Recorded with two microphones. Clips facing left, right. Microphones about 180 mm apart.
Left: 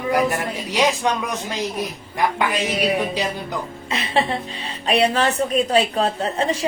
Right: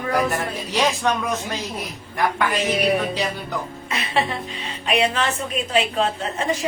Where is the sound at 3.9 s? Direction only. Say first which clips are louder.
Left 2 dB; 30° left (ahead or behind).